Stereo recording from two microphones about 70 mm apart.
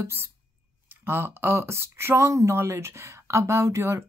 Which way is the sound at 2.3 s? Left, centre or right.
Right.